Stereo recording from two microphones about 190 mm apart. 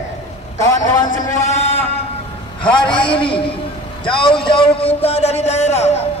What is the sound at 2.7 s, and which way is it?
A man's voice, 25° left (ahead or behind).